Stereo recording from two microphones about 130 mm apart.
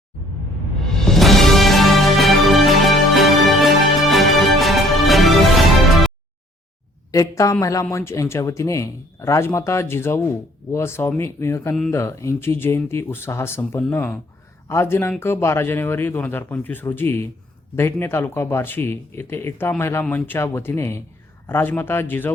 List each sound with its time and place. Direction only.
1.0 s music: centre (ahead or behind)
7.1 s speech: 25° left (ahead or behind)